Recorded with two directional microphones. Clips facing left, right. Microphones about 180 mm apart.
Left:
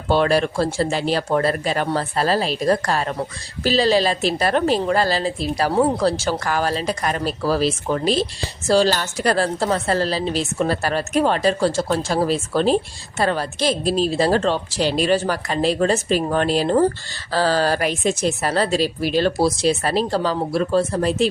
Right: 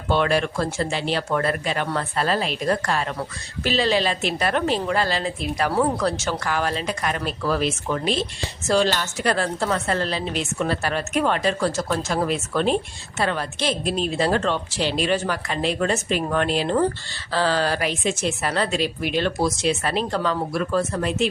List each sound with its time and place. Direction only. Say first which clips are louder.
0.1 s speech: left 3 dB; 35° left (ahead or behind)